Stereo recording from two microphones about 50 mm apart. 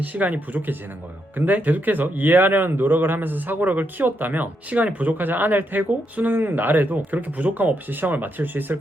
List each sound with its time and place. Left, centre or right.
0.0 s a man's voice: right